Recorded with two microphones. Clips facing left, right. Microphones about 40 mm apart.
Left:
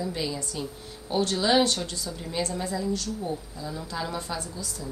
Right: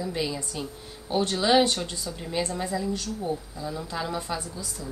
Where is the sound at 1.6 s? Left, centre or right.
Right; by 4.4 s centre.